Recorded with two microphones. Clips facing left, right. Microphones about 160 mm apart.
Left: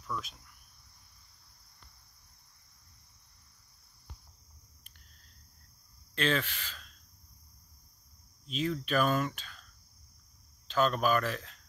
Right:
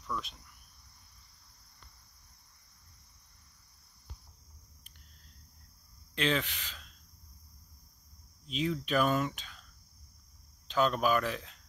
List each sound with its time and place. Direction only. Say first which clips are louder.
0.0 s cricket: even; 5° left (ahead or behind)
6.1 s speech: even; 15° right (ahead or behind)
8.5 s speech: even; 15° right (ahead or behind)
10.7 s speech: even; 15° right (ahead or behind)